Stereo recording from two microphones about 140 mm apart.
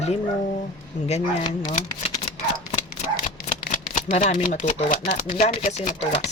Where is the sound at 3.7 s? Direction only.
65° left (ahead or behind).